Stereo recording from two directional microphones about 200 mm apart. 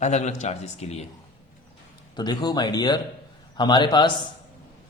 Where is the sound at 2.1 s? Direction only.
20° left (ahead or behind).